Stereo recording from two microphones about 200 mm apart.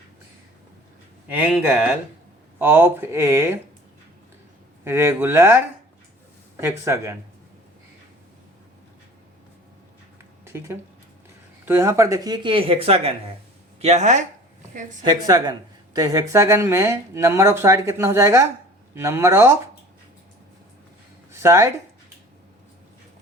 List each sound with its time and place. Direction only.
1.3 s speech: 10° right (ahead or behind)
4.8 s speech: 10° right (ahead or behind)
6.6 s speech: 15° right (ahead or behind)
10.4 s a woman's voice: 15° right (ahead or behind); by 14.9 s 40° right (ahead or behind)
15.0 s speech: 20° right (ahead or behind)
21.3 s speech: 15° right (ahead or behind)